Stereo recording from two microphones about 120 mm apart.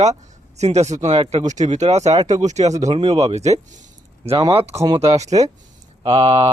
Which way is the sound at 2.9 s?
55° right (ahead or behind).